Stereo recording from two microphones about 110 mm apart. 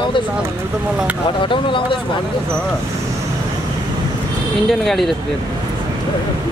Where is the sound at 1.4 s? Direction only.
50° left (ahead or behind).